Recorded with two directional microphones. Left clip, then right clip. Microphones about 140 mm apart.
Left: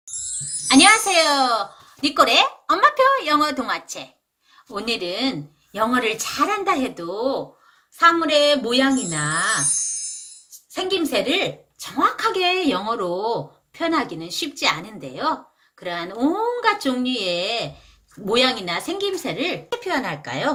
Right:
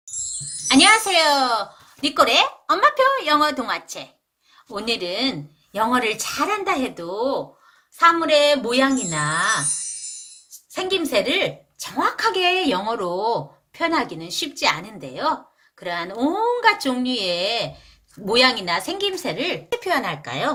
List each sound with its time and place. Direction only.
0.7 s speech: 20° right (ahead or behind)
4.7 s speech: 30° right (ahead or behind)
9.6 s speech: centre (ahead or behind)
10.7 s a woman's voice: 30° right (ahead or behind)